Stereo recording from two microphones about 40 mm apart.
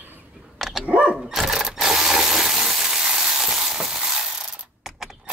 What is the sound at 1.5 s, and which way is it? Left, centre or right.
Mechanisms, centre.